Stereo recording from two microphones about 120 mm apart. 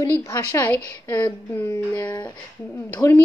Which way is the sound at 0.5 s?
15° left (ahead or behind).